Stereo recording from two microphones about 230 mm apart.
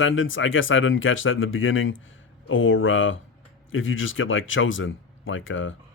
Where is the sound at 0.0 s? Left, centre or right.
Left.